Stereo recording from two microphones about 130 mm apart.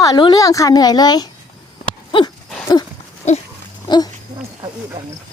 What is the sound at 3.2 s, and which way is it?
Pig, 60° left (ahead or behind).